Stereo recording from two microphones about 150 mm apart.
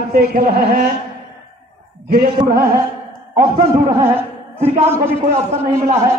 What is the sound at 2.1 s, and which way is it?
Speech, 85° right.